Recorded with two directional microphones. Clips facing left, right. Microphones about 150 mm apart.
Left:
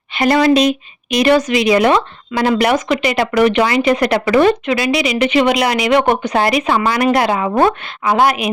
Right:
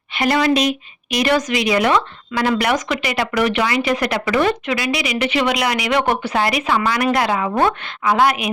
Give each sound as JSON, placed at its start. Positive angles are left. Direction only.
{"t": 0.2, "sound": "speech", "side_deg": 35}
{"t": 1.1, "sound": "speech", "side_deg": 25}
{"t": 6.3, "sound": "speech", "side_deg": 35}